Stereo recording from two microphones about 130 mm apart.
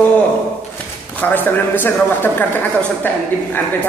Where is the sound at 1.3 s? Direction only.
15° left (ahead or behind).